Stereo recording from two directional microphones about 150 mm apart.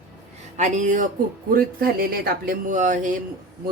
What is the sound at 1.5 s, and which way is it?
A woman's voice, 75° right (ahead or behind).